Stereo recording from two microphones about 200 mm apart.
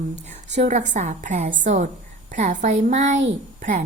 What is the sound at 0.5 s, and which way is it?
A woman's voice, 35° right (ahead or behind).